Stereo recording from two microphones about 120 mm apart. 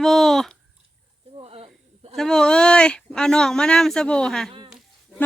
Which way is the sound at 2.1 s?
5° left (ahead or behind).